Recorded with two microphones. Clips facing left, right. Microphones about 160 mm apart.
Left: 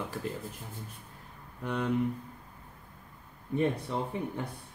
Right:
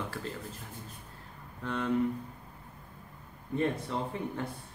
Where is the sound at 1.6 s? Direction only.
15° left (ahead or behind).